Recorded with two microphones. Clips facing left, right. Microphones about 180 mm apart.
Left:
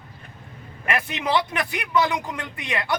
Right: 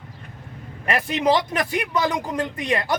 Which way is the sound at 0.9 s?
35° right (ahead or behind).